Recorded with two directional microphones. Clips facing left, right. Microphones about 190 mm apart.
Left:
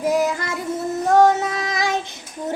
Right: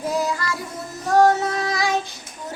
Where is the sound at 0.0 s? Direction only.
20° left (ahead or behind).